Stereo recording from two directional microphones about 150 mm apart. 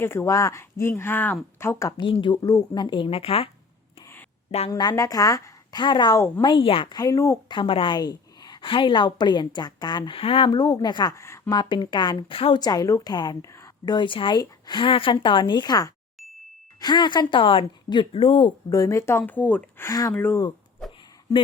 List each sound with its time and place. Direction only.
0.0 s speech: 15° left (ahead or behind)
2.0 s a woman's voice: 35° left (ahead or behind)
4.7 s a woman's voice: 25° left (ahead or behind)
7.5 s a woman's voice: 35° left (ahead or behind)
11.5 s a woman's voice: 30° left (ahead or behind)
18.7 s speech: 20° left (ahead or behind)
19.9 s a woman's voice: 25° left (ahead or behind)